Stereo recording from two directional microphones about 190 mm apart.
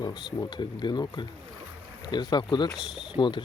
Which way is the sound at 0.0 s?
20° left (ahead or behind).